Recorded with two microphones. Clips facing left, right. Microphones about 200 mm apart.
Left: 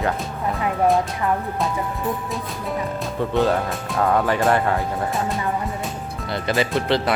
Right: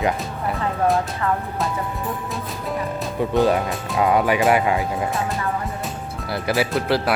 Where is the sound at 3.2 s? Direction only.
10° right (ahead or behind).